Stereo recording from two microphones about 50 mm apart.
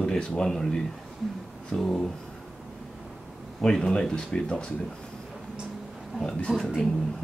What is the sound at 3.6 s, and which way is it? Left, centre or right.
Speech, centre.